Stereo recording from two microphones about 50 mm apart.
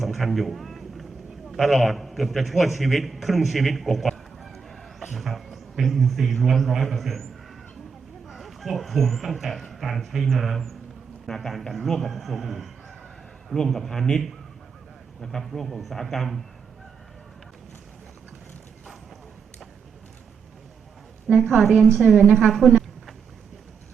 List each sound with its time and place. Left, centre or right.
0.0 s a sound: centre
1.5 s a man's voice: centre
4.4 s chicken: centre
8.3 s speech: centre
21.3 s a woman's voice: right
21.6 s speech: centre
22.5 s a sound: centre